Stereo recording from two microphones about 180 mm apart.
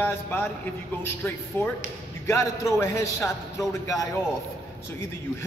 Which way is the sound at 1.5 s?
10° left (ahead or behind).